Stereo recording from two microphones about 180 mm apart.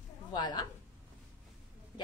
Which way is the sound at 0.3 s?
25° left (ahead or behind).